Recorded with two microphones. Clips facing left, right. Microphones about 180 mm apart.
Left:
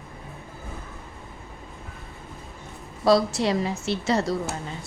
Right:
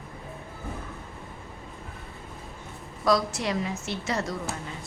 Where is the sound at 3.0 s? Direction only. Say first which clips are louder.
Left 5 dB; 30° left (ahead or behind).